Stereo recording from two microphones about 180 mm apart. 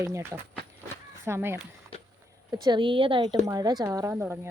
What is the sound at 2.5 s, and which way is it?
A woman's voice, 25° right (ahead or behind).